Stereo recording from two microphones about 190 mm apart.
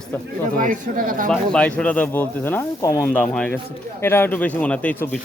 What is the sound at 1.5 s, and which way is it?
A man's voice, 5° left (ahead or behind).